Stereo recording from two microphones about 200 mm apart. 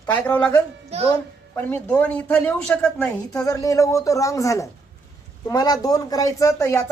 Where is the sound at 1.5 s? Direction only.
10° left (ahead or behind).